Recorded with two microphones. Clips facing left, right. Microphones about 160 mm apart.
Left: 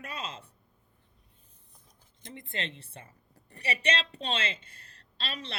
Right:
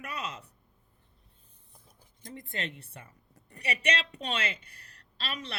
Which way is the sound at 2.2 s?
25° left (ahead or behind).